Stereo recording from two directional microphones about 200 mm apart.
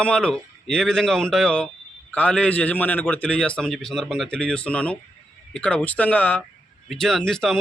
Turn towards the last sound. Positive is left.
turn(degrees=0)  # may be behind; listen again after turning